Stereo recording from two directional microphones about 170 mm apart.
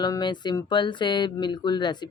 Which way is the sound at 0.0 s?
25° left (ahead or behind).